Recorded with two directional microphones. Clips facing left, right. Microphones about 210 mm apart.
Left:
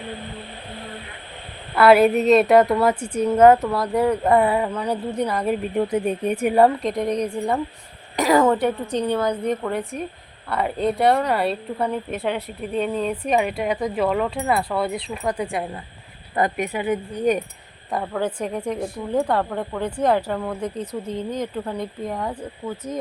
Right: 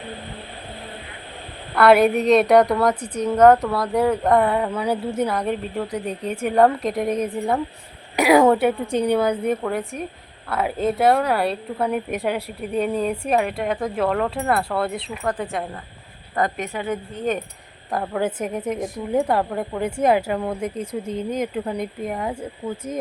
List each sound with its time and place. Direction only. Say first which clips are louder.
1.7 s speech: left 1 dB; centre (ahead or behind)
4.7 s a woman's voice: right 2 dB; 10° right (ahead or behind)
5.7 s speech: left 5 dB; 20° left (ahead or behind)
6.7 s a woman's voice: even; 5° right (ahead or behind)
11.9 s a woman's voice: right 4 dB; 15° right (ahead or behind)
16.3 s speech: left 2 dB; 20° left (ahead or behind)
18.1 s a woman's voice: right 2 dB; 10° right (ahead or behind)
18.3 s speech: even; 20° right (ahead or behind)
19.1 s a woman's voice: right 1 dB; 10° right (ahead or behind)